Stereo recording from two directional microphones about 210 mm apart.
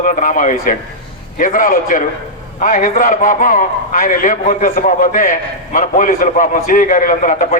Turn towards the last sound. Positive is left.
turn(degrees=40)  # may be behind; listen again after turning